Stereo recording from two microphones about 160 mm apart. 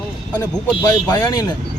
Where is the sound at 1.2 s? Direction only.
25° left (ahead or behind).